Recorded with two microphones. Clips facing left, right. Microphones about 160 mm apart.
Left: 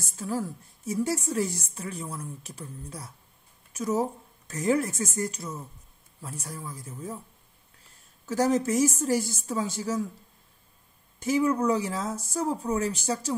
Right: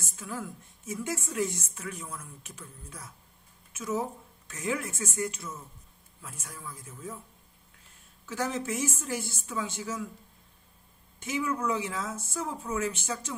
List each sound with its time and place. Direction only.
0.0 s a woman's voice: 35° left (ahead or behind)
8.3 s a woman's voice: 40° left (ahead or behind)
11.1 s a woman's voice: 40° left (ahead or behind)